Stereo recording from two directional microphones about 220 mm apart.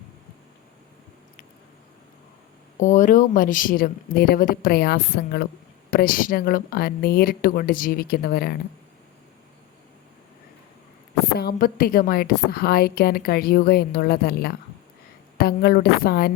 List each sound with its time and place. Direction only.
2.7 s a woman's voice: 35° left (ahead or behind)
11.3 s a woman's voice: 40° left (ahead or behind)